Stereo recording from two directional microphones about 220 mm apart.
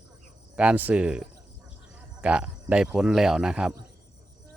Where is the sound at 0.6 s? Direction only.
5° right (ahead or behind).